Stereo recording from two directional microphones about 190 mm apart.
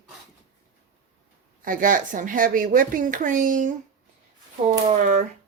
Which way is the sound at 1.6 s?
45° right (ahead or behind).